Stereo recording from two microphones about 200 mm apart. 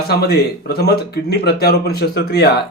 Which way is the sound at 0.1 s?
50° left (ahead or behind).